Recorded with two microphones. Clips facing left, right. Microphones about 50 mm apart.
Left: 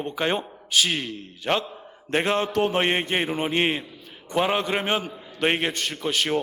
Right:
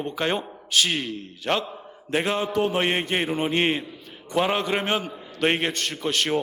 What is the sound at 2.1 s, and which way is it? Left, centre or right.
Mantra, centre.